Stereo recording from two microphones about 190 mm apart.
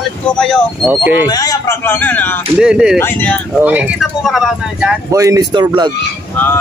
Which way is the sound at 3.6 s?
10° right (ahead or behind).